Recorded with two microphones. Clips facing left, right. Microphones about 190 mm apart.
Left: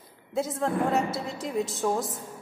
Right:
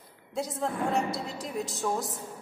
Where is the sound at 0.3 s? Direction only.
Centre (ahead or behind).